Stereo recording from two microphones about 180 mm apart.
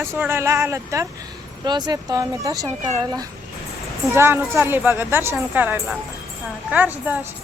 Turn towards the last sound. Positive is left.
turn(degrees=-10)  # may be behind; listen again after turning